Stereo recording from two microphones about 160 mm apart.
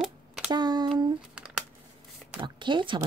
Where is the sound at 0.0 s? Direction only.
5° right (ahead or behind).